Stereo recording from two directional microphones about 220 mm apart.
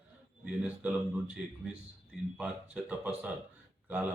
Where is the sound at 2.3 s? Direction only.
5° right (ahead or behind).